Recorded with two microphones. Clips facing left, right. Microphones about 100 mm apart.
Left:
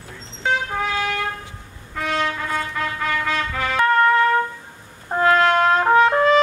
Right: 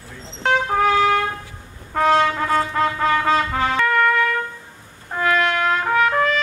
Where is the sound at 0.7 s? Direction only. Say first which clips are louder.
Right 7 dB; 50° right (ahead or behind).